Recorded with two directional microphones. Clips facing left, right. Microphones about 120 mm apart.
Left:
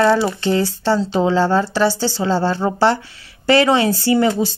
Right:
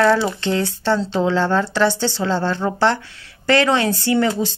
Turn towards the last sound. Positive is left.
turn(degrees=5)  # may be behind; listen again after turning